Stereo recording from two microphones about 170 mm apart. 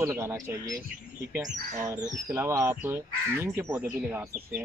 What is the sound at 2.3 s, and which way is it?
Speech, 15° right (ahead or behind).